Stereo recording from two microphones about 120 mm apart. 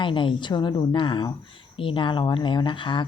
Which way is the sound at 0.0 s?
45° left (ahead or behind).